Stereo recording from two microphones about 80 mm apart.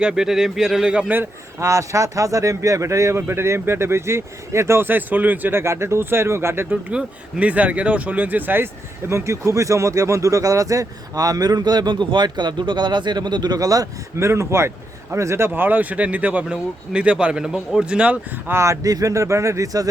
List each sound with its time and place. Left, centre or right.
0.0 s a man's voice: centre; by 6.7 s right
6.9 s speech: centre; by 14.3 s right
14.3 s a man's voice: right; by 18.5 s centre
18.5 s a man's voice: right